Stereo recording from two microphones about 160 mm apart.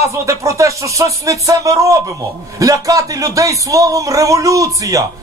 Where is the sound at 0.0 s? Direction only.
20° right (ahead or behind).